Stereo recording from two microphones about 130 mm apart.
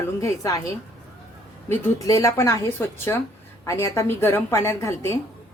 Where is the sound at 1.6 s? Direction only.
20° left (ahead or behind).